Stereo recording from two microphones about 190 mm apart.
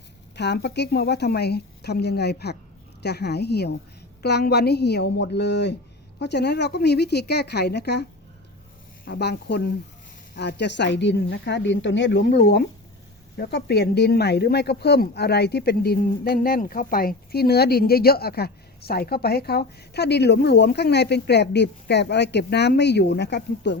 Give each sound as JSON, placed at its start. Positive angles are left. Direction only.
{"t": 0.3, "sound": "speech", "side_deg": 60}
{"t": 9.0, "sound": "a woman's voice", "side_deg": 55}